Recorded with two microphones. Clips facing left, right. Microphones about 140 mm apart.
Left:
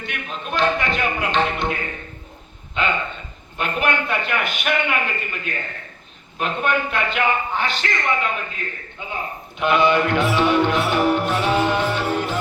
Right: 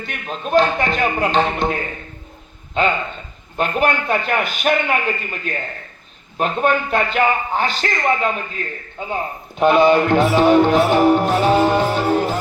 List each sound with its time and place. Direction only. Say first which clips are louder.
0.0 s music: right 3 dB; 40° right (ahead or behind)
2.8 s music: right 4 dB; 40° right (ahead or behind)